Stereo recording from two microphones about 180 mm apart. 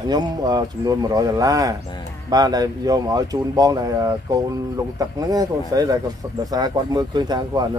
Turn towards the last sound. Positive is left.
turn(degrees=-25)  # may be behind; listen again after turning